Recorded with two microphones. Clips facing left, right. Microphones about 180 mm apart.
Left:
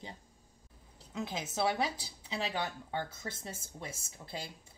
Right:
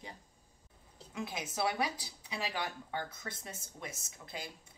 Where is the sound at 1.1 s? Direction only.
25° left (ahead or behind).